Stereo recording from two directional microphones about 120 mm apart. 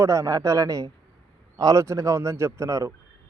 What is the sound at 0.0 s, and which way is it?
A man's voice, 25° right (ahead or behind).